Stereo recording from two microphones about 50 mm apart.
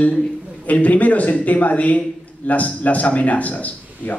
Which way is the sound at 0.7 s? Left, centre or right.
Left.